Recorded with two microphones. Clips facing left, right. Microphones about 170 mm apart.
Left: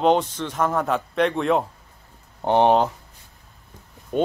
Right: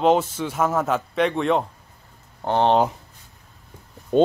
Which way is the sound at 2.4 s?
15° left (ahead or behind).